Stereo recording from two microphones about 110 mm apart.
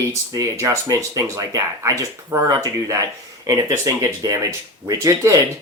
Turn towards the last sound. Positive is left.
turn(degrees=-30)  # may be behind; listen again after turning